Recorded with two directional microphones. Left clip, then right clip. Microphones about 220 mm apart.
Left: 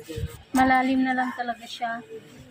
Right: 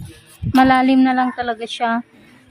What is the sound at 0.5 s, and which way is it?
Speech, 55° right (ahead or behind).